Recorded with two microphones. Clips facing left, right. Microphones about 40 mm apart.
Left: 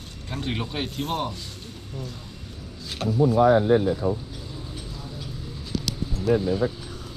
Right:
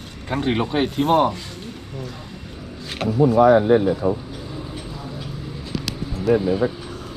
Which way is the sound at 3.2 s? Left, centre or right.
Right.